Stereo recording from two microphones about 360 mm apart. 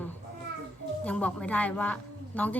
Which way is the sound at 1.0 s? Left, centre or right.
Centre.